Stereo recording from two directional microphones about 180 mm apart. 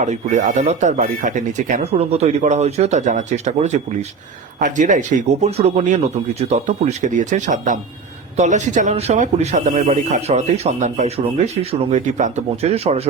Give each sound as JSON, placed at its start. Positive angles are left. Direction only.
{"t": 0.0, "sound": "a man's voice", "side_deg": -40}